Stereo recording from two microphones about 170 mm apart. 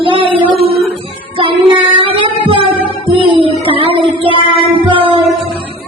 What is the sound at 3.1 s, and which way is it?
Music, 30° right (ahead or behind).